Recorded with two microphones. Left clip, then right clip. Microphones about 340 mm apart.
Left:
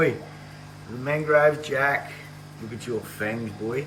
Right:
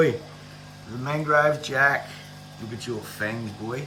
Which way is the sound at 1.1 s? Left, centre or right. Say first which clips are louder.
Left 1 dB; left.